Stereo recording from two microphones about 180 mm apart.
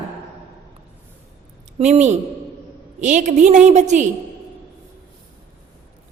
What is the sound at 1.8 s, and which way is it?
A woman's voice, 40° right (ahead or behind).